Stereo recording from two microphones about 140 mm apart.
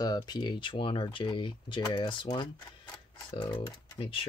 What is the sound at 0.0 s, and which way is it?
Speech, 30° left (ahead or behind).